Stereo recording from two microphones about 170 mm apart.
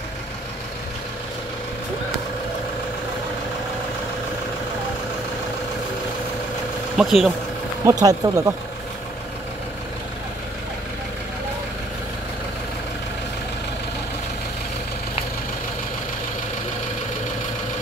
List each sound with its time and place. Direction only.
7.0 s speech: centre (ahead or behind)
7.8 s speech: 20° right (ahead or behind)